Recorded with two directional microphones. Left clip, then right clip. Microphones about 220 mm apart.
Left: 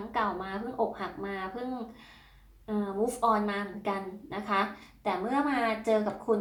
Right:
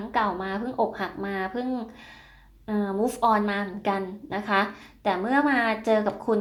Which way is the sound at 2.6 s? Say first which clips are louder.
Right 4 dB; 40° right (ahead or behind).